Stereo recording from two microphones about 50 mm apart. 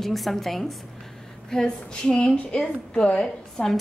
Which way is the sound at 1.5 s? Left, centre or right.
Centre.